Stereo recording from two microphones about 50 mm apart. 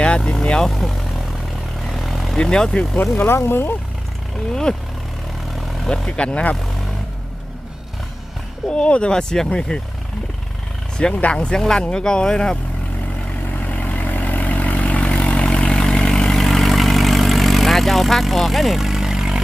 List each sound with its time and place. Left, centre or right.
0.3 s vehicle: centre
0.7 s speech: centre
1.9 s vehicle: centre
2.4 s speech: centre
3.2 s speech: left
4.7 s speech: centre
6.1 s speech: left
8.7 s speech: left
11.1 s speech: left
13.5 s vehicle: left
15.6 s vehicle: centre